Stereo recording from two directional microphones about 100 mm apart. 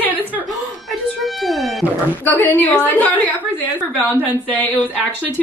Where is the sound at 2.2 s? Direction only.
20° left (ahead or behind).